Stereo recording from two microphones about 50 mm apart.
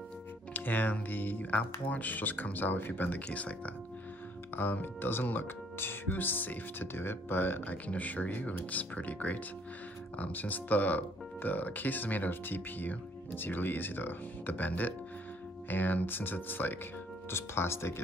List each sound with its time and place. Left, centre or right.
0.5 s speech: left
3.3 s speech: left
4.6 s speech: left
17.3 s speech: left